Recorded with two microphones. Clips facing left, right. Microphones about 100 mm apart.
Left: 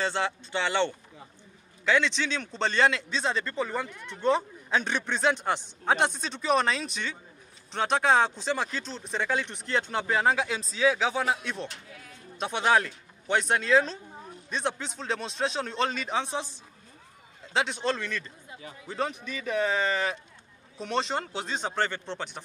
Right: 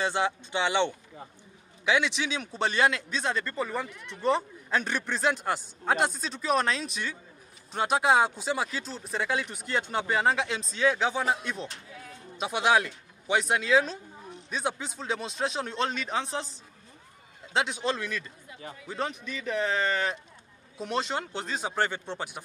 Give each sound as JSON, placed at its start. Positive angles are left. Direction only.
{"t": 0.0, "sound": "a man's voice", "side_deg": -15}